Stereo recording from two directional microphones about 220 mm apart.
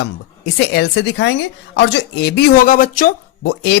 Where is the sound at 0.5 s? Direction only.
50° left (ahead or behind).